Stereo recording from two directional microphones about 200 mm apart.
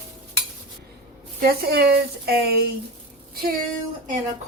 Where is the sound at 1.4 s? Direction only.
50° right (ahead or behind).